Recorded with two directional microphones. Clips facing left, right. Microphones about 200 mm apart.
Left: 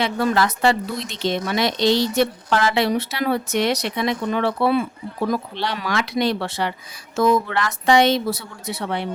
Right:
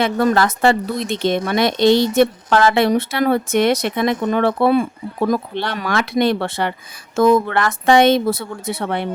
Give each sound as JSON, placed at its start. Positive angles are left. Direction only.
{"t": 0.0, "sound": "speech", "side_deg": -50}